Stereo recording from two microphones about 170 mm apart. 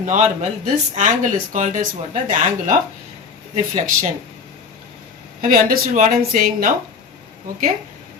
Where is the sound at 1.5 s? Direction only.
50° right (ahead or behind).